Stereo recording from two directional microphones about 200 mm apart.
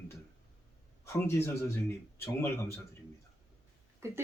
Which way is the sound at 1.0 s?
15° left (ahead or behind).